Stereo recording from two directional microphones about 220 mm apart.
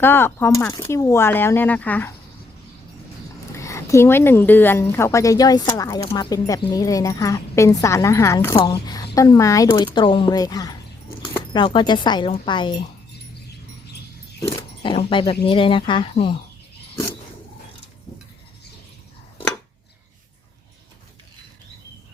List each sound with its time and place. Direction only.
0.0 s speech: 10° left (ahead or behind)
3.6 s speech: 15° left (ahead or behind)
14.8 s speech: 25° left (ahead or behind)